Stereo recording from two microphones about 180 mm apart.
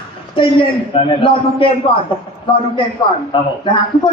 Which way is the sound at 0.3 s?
30° left (ahead or behind).